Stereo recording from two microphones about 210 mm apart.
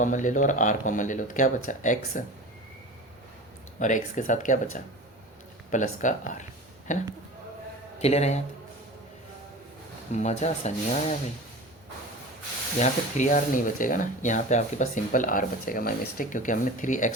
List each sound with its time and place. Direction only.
0.0 s speech: 35° left (ahead or behind)
3.8 s a man's voice: 35° left (ahead or behind)
10.1 s speech: 35° left (ahead or behind)
12.8 s speech: 35° left (ahead or behind)